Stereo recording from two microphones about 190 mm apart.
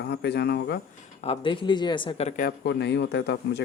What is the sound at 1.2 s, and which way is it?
Speech, 30° left (ahead or behind).